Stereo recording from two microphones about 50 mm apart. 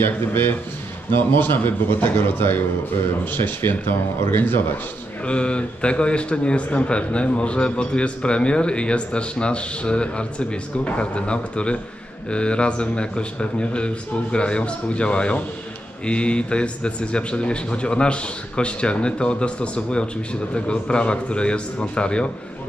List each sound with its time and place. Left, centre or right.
0.0 s a man's voice: left
5.2 s speech: left